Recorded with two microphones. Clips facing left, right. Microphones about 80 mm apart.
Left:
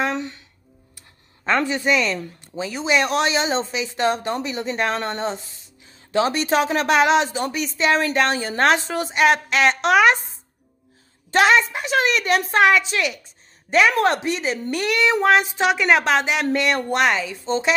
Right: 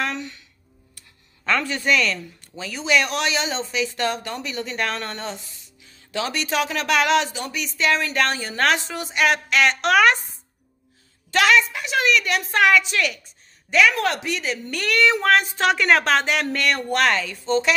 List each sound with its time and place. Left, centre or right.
0.0 s music: left
0.9 s speech: left
11.3 s a woman's voice: left